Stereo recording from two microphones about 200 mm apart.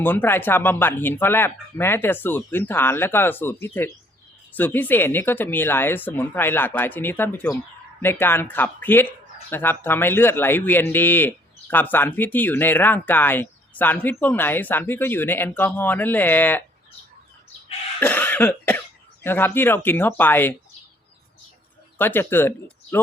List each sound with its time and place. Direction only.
0.0 s speech: 10° left (ahead or behind)
18.0 s cough: 10° left (ahead or behind)
19.2 s speech: 10° left (ahead or behind)
21.9 s speech: 10° left (ahead or behind)